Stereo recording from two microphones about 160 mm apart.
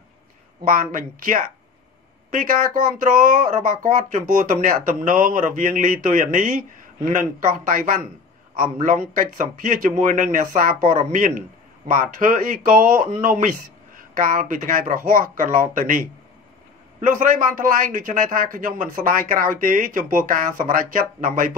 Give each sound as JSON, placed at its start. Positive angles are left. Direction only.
{"t": 0.7, "sound": "a man's voice", "side_deg": -60}